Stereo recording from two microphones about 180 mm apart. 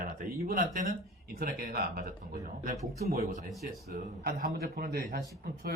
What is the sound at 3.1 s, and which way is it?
A man's voice, 55° right (ahead or behind).